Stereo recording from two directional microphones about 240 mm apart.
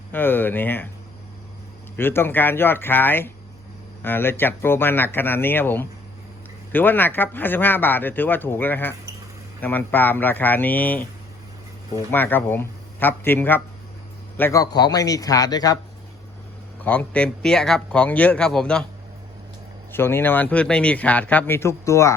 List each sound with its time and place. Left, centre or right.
0.1 s speech: centre
2.0 s speech: centre
12.1 s speech: centre
16.8 s speech: centre
19.9 s speech: centre